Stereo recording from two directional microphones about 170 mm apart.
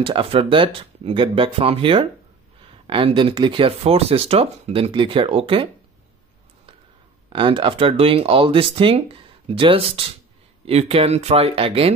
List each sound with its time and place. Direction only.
0.0 s speech: 30° right (ahead or behind)
7.3 s speech: 30° right (ahead or behind)